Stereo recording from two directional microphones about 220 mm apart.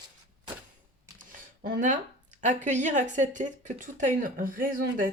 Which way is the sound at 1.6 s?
35° right (ahead or behind).